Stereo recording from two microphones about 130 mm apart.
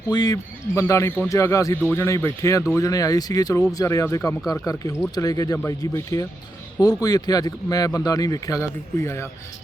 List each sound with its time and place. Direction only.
0.1 s speech: 30° left (ahead or behind)